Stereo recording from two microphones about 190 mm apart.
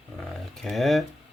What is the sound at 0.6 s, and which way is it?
Speech, centre (ahead or behind).